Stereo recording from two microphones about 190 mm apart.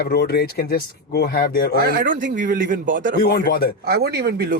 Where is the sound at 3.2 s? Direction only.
55° left (ahead or behind).